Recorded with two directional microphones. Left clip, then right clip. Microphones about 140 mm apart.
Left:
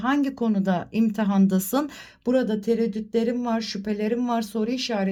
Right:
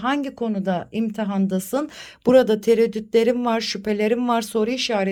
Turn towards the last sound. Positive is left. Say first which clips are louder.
# right 5 dB
turn(degrees=-25)  # may be behind; listen again after turning